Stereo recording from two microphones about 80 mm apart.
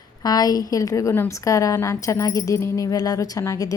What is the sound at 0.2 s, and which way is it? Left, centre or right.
A woman's voice, left.